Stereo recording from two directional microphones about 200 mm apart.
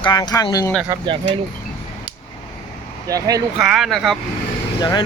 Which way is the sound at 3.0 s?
20° right (ahead or behind).